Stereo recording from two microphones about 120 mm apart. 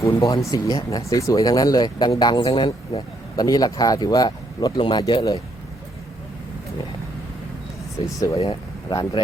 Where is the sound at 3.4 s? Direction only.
30° left (ahead or behind).